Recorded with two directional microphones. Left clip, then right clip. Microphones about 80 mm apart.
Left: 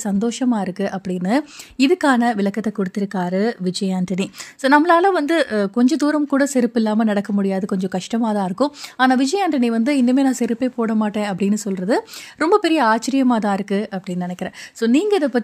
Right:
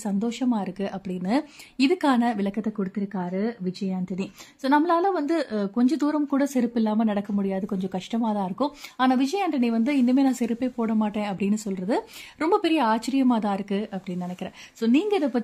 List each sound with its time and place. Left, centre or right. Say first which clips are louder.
0.0 s speech: left 6 dB; left
2.8 s speech: left 8 dB; left